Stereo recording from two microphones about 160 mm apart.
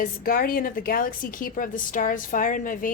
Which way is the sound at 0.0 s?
65° left (ahead or behind).